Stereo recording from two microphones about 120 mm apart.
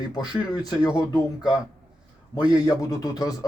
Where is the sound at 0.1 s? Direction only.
35° left (ahead or behind).